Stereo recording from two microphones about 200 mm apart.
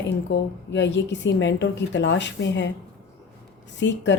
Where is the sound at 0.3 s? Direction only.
60° left (ahead or behind).